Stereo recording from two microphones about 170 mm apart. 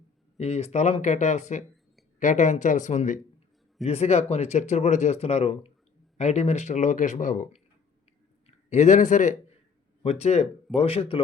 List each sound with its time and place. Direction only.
0.3 s a man's voice: 40° left (ahead or behind)